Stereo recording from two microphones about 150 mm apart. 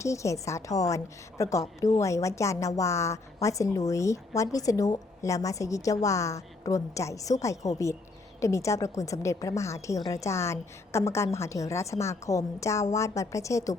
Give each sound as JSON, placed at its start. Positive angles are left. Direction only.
{"t": 0.0, "sound": "a woman's voice", "side_deg": 20}